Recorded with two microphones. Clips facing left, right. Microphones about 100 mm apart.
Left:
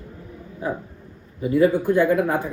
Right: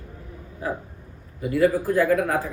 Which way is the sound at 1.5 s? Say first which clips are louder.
Left 3 dB; 25° left (ahead or behind).